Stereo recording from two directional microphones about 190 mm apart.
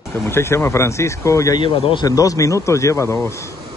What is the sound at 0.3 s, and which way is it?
Speech, 10° left (ahead or behind).